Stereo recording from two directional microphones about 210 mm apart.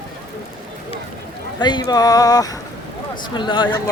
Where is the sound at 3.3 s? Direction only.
20° left (ahead or behind).